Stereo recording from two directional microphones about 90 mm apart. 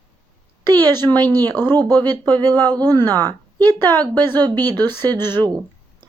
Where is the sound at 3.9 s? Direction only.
45° right (ahead or behind).